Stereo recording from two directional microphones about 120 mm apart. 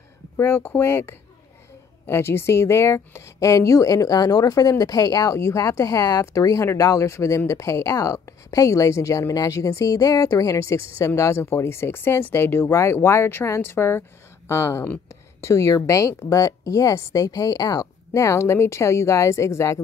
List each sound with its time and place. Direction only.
0.4 s speech: 20° left (ahead or behind)